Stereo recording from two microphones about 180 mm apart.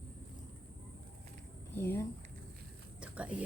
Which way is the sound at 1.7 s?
15° left (ahead or behind).